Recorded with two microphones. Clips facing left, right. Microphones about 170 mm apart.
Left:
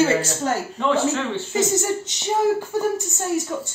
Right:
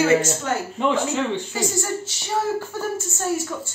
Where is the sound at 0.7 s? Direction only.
15° right (ahead or behind).